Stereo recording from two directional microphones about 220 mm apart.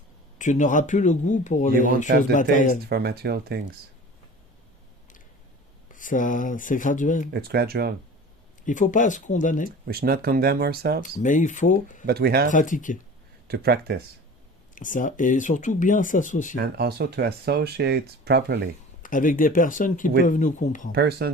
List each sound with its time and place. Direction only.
0.3 s speech: 35° left (ahead or behind)
2.9 s speech: 45° right (ahead or behind)
5.9 s speech: 35° left (ahead or behind)
7.3 s speech: 45° right (ahead or behind)
8.6 s speech: 35° left (ahead or behind)
9.8 s speech: 45° right (ahead or behind)
11.0 s speech: 35° left (ahead or behind)
12.0 s speech: 45° right (ahead or behind)
12.5 s speech: 35° left (ahead or behind)
13.5 s speech: 45° right (ahead or behind)
14.8 s speech: 35° left (ahead or behind)
16.6 s speech: 45° right (ahead or behind)
19.0 s speech: 35° left (ahead or behind)
20.9 s speech: 45° right (ahead or behind)